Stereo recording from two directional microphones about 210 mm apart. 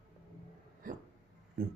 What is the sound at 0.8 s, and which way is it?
Hiccup, 40° right (ahead or behind).